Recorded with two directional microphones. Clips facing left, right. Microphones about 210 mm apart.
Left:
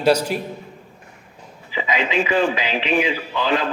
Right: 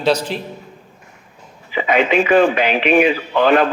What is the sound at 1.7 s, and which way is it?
Speech, 60° right (ahead or behind).